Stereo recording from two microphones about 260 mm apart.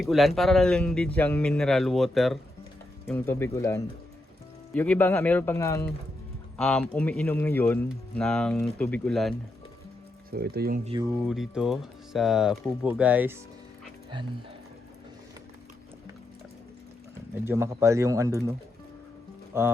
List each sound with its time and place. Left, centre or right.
0.0 s speech: centre
10.3 s speech: right
10.8 s speech: centre
11.2 s speech: centre
17.4 s speech: centre
19.5 s speech: centre